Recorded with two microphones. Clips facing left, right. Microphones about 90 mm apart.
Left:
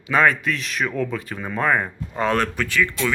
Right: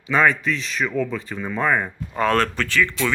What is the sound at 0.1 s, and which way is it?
Speech, centre (ahead or behind).